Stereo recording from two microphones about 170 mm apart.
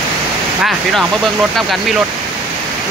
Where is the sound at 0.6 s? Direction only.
Centre (ahead or behind).